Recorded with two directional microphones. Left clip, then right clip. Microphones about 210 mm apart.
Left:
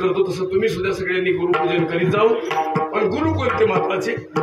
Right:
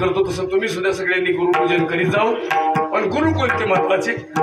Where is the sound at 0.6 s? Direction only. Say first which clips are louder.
Right 1 dB; 25° right (ahead or behind).